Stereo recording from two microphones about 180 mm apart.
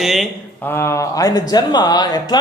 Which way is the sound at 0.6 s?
15° left (ahead or behind).